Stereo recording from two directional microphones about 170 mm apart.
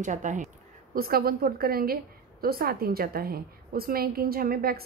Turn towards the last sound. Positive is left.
turn(degrees=-60)  # may be behind; listen again after turning